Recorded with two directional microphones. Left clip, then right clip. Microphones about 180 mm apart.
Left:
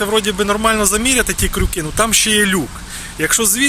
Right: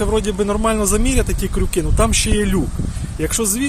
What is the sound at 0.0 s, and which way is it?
Speech, 10° right (ahead or behind).